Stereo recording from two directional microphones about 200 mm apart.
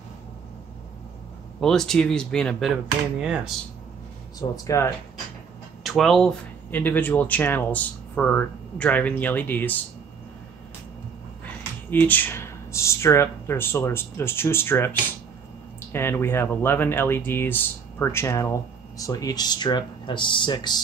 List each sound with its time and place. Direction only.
1.6 s speech: centre (ahead or behind)
4.4 s speech: 15° left (ahead or behind)
5.9 s speech: centre (ahead or behind)
11.4 s speech: 10° left (ahead or behind)